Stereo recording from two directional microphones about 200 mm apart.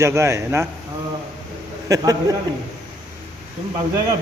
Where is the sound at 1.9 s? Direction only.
15° right (ahead or behind).